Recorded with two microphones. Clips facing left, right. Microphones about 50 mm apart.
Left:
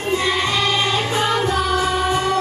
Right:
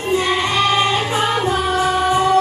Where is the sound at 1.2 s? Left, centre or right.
Centre.